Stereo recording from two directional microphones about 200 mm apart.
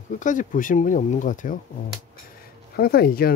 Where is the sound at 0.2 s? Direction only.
40° left (ahead or behind).